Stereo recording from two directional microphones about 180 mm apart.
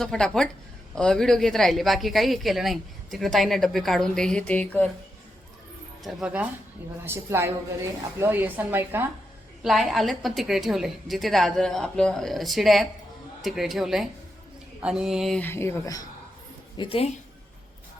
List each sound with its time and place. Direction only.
0.0 s a woman's voice: 5° left (ahead or behind)
6.0 s a woman's voice: centre (ahead or behind)
9.6 s a woman's voice: centre (ahead or behind); by 16.0 s 15° left (ahead or behind)
16.7 s speech: 30° left (ahead or behind)